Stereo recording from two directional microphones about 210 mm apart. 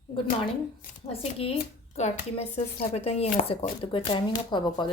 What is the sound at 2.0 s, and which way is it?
Speech, 30° left (ahead or behind).